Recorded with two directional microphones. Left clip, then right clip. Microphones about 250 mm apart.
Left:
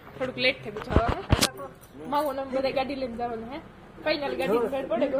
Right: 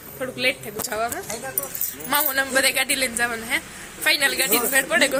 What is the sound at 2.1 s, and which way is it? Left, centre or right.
Speech, right.